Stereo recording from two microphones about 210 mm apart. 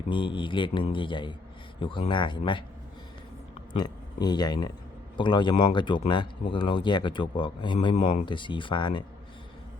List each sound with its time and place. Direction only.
0.1 s speech: 25° left (ahead or behind)
4.2 s speech: 20° left (ahead or behind)